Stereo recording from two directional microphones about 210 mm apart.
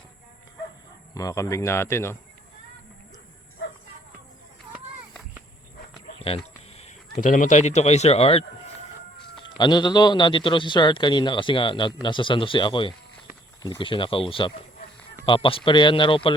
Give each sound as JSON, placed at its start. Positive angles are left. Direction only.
{"t": 1.1, "sound": "speech", "side_deg": 15}
{"t": 6.1, "sound": "a man's voice", "side_deg": 30}